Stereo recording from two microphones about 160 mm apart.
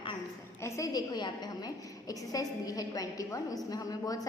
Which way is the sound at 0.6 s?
20° left (ahead or behind).